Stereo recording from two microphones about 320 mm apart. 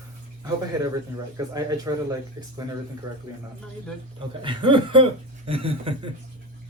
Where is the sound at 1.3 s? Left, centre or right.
Centre.